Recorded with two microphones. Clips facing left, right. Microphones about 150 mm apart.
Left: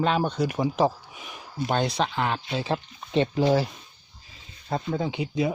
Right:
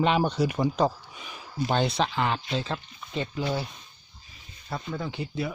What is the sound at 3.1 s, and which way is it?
Speech, 70° left (ahead or behind).